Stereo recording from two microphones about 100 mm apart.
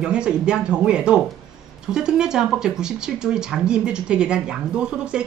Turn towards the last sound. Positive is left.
turn(degrees=-10)  # may be behind; listen again after turning